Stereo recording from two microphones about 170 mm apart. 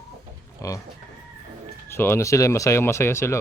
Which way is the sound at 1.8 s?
15° left (ahead or behind).